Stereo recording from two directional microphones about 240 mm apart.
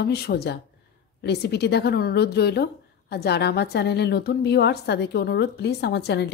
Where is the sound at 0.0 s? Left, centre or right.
Left.